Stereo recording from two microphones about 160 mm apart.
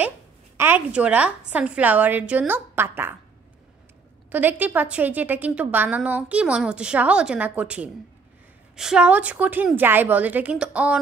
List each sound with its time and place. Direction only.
0.6 s a woman's voice: 10° right (ahead or behind)
4.3 s a woman's voice: 10° right (ahead or behind)